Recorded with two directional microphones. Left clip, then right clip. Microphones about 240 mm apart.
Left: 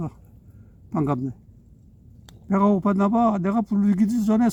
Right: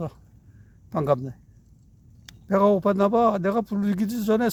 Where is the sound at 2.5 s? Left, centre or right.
Right.